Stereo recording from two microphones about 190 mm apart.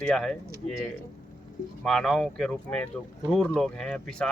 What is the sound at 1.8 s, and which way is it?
Speech, centre (ahead or behind).